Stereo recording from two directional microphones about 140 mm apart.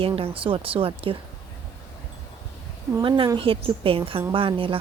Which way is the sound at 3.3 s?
40° right (ahead or behind).